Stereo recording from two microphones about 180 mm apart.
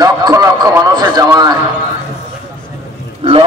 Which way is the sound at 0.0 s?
20° right (ahead or behind).